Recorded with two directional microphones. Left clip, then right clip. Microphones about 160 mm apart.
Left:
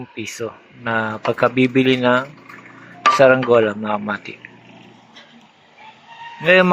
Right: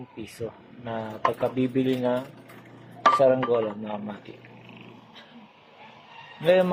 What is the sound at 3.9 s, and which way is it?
Speech, 40° left (ahead or behind).